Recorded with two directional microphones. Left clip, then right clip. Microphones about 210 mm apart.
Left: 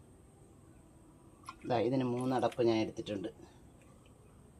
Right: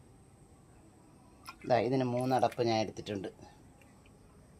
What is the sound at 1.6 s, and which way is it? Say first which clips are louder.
Speech: right 3 dB; 45° right (ahead or behind).